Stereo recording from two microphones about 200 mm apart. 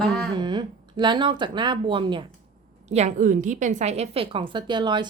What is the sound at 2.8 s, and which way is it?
A woman's voice, 35° right (ahead or behind).